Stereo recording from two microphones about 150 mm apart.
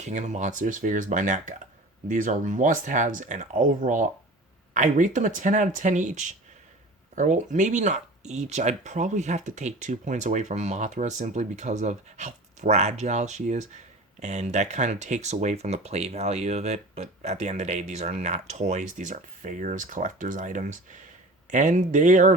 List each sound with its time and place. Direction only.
0.0 s speech: 50° right (ahead or behind)